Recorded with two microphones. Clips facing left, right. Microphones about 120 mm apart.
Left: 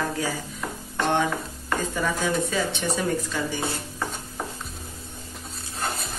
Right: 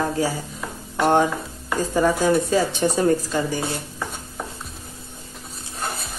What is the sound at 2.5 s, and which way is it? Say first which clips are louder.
Speech: right 6 dB; 40° right (ahead or behind).